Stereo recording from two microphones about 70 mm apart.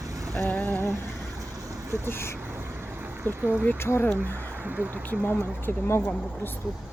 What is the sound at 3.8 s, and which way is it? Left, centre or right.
Speech, left.